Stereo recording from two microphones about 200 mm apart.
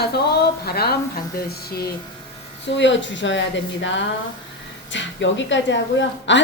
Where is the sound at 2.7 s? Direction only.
65° left (ahead or behind).